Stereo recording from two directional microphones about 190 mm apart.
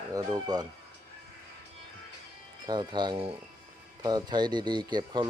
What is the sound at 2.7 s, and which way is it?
Speech, 25° right (ahead or behind).